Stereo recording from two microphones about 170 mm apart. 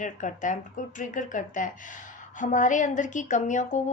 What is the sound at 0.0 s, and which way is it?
A woman's voice, 50° left (ahead or behind).